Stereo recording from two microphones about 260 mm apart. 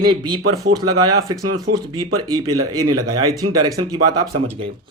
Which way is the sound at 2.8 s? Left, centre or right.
Right.